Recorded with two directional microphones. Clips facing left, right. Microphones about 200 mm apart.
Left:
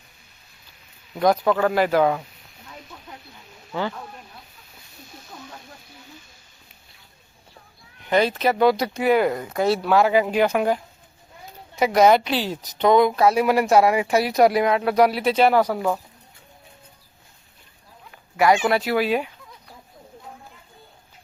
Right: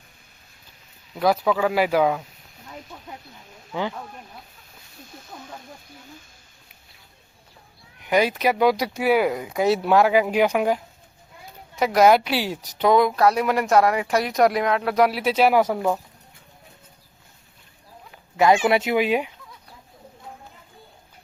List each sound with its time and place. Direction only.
1.2 s speech: 5° right (ahead or behind)
8.0 s speech: 10° right (ahead or behind)
11.8 s a woman's voice: centre (ahead or behind); by 16.0 s 15° right (ahead or behind)
18.7 s speech: 20° right (ahead or behind)